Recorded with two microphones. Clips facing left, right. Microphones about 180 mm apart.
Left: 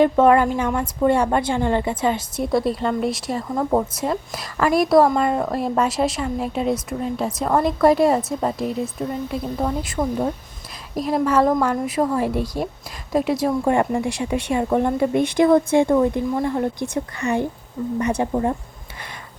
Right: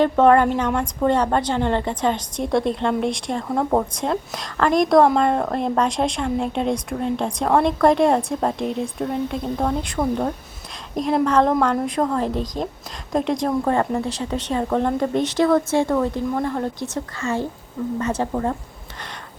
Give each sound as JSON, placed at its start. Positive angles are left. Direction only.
{"t": 0.0, "sound": "a woman's voice", "side_deg": 10}